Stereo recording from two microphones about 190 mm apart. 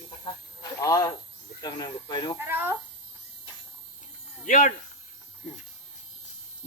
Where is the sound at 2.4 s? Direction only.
10° right (ahead or behind).